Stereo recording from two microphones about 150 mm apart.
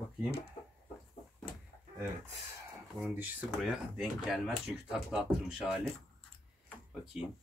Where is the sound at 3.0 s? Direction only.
5° right (ahead or behind).